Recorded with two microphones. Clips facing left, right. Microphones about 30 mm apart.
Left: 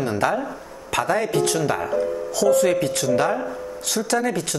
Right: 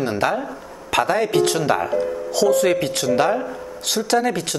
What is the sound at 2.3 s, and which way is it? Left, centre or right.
Speech, right.